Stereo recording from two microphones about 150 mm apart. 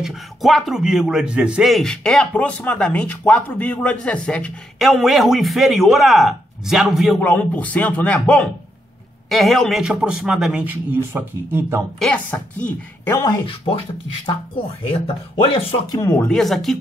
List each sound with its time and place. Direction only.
0.0 s speech: centre (ahead or behind)
7.2 s speech: 10° left (ahead or behind); by 11.8 s 15° right (ahead or behind)
12.0 s speech: 10° left (ahead or behind)
13.2 s speech: 25° left (ahead or behind)
14.8 s speech: 40° left (ahead or behind)
15.9 s speech: 20° left (ahead or behind)
16.3 s speech: centre (ahead or behind)